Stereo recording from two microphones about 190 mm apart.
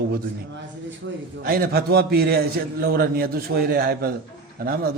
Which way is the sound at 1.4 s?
50° right (ahead or behind).